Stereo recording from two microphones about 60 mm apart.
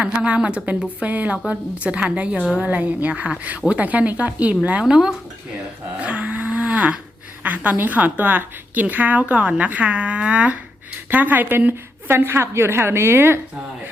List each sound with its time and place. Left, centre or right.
0.0 s a woman's voice: centre
6.0 s livestock: right
7.4 s a woman's voice: right